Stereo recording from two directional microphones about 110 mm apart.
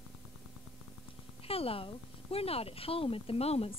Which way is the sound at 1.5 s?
60° left (ahead or behind).